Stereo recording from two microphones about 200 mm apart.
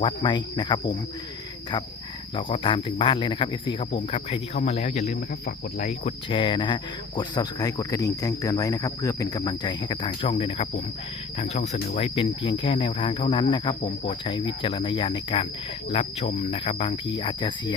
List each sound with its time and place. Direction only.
0.0 s speech: 25° left (ahead or behind)
2.3 s speech: 25° left (ahead or behind)